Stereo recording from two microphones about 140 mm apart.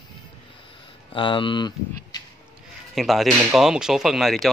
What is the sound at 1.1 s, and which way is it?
Speech, 35° left (ahead or behind).